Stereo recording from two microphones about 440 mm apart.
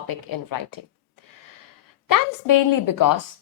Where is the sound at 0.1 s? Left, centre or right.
Left.